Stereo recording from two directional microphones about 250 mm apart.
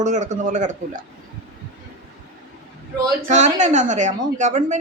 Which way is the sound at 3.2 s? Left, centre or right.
Right.